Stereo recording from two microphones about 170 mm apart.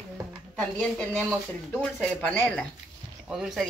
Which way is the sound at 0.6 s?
5° left (ahead or behind).